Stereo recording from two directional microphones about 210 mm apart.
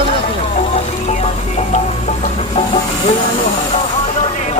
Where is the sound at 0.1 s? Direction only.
30° left (ahead or behind).